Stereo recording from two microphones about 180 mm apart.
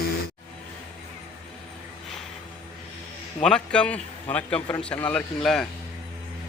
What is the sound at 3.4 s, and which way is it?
A man's voice, 5° left (ahead or behind).